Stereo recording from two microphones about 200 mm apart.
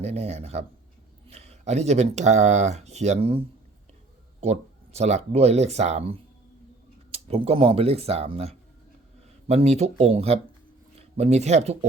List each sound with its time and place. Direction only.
0.0 s speech: 35° right (ahead or behind)